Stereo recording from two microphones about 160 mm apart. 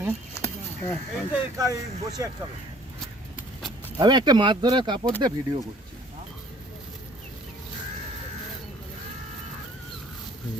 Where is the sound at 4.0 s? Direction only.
25° right (ahead or behind).